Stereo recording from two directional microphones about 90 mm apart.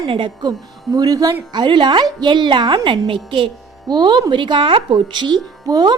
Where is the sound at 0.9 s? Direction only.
45° right (ahead or behind).